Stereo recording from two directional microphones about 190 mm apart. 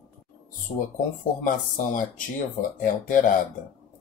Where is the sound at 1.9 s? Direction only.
45° left (ahead or behind).